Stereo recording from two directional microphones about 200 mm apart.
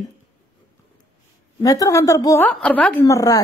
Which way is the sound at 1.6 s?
15° left (ahead or behind).